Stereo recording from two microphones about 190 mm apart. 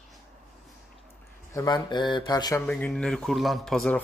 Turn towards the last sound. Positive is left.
turn(degrees=5)  # may be behind; listen again after turning